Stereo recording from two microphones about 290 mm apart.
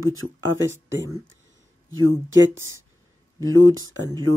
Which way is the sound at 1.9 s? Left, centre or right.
Right.